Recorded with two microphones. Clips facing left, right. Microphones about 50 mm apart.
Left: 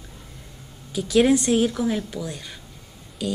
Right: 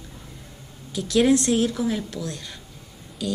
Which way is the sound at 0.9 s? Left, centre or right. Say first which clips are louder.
Left 1 dB; centre.